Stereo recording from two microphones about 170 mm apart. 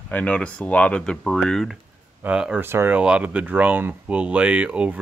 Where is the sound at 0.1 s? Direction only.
10° left (ahead or behind).